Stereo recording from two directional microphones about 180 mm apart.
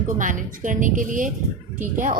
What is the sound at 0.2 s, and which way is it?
A woman's voice, 45° right (ahead or behind).